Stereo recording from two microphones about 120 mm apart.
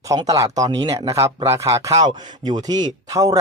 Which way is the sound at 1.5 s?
25° right (ahead or behind).